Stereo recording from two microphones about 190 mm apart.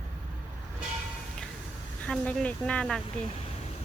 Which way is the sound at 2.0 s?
5° left (ahead or behind).